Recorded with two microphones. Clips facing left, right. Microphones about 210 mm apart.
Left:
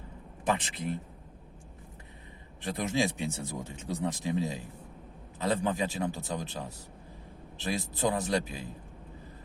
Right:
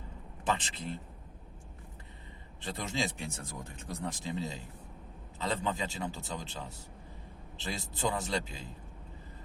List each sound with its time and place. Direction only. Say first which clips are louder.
0.4 s speech: left 3 dB; 15° left (ahead or behind)
2.6 s speech: left 6 dB; 15° left (ahead or behind)